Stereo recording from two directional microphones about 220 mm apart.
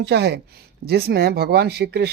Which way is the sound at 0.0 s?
50° right (ahead or behind).